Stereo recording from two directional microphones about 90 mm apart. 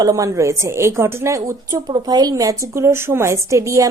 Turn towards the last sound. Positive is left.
turn(degrees=-35)  # may be behind; listen again after turning